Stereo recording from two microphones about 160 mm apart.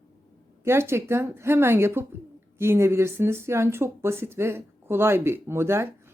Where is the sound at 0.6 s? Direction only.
15° right (ahead or behind).